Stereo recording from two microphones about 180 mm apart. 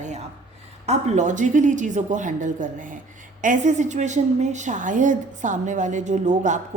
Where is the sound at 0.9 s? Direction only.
40° right (ahead or behind).